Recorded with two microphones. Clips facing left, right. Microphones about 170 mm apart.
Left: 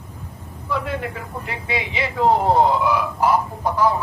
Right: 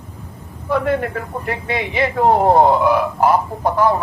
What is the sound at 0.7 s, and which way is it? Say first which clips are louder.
A man's voice: right 7 dB; 55° right (ahead or behind).